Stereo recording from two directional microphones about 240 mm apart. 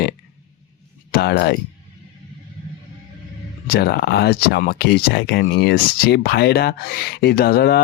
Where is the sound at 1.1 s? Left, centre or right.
Left.